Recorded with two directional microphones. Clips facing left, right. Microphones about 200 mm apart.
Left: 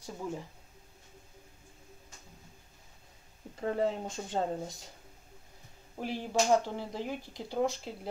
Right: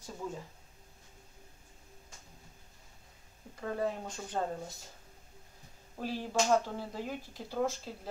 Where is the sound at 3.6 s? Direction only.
25° left (ahead or behind).